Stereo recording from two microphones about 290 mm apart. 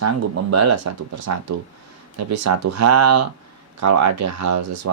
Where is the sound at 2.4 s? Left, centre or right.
Right.